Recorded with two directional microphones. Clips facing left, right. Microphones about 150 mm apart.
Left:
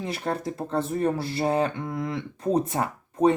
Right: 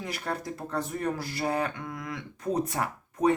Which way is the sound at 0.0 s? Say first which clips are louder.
Left 5 dB; 30° left (ahead or behind).